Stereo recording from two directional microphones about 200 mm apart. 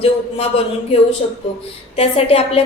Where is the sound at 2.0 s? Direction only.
30° left (ahead or behind).